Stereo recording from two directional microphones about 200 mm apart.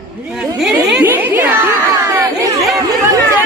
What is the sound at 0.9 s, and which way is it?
Speech, 10° right (ahead or behind).